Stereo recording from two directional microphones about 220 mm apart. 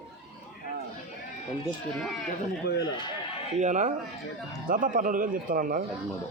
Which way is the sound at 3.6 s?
35° right (ahead or behind).